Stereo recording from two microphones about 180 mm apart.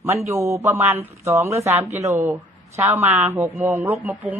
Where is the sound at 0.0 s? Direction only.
15° right (ahead or behind).